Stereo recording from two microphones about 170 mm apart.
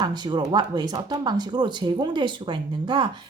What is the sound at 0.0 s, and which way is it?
Speech, 25° right (ahead or behind).